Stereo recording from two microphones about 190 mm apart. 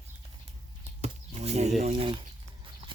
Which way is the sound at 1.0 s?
35° right (ahead or behind).